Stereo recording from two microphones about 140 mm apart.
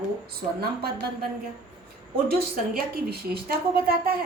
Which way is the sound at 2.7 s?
90° right.